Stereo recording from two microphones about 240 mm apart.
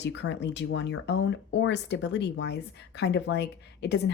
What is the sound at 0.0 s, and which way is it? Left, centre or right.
Speech, left.